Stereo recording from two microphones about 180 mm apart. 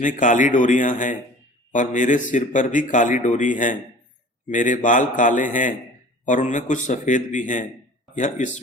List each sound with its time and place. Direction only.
0.0 s a man's voice: 45° left (ahead or behind)